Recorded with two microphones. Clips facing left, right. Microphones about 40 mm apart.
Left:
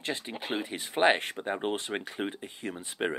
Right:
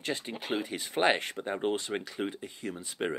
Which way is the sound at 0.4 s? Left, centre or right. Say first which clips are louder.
Even; centre.